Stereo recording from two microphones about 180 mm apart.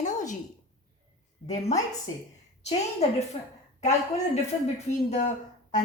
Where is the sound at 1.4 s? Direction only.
35° left (ahead or behind).